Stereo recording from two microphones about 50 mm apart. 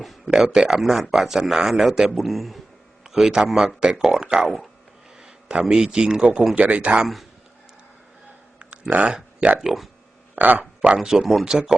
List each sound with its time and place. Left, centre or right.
0.3 s a man's voice: centre
3.1 s a man's voice: centre
5.1 s a sound: centre
5.7 s a man's voice: centre
8.5 s a sound: right
9.6 s a man's voice: centre
10.3 s speech: right
10.8 s a man's voice: centre